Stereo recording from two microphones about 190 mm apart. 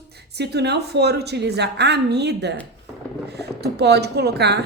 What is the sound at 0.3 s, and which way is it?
A woman's voice, 60° right (ahead or behind).